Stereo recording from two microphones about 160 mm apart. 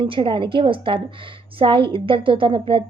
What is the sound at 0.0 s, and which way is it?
A woman's voice, 30° right (ahead or behind).